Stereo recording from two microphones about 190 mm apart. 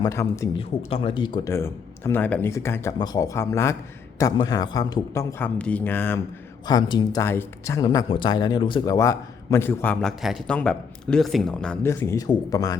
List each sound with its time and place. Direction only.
0.0 s speech: 15° left (ahead or behind)
0.9 s speech: 25° left (ahead or behind); by 6.1 s 10° left (ahead or behind)
6.7 s speech: 20° left (ahead or behind)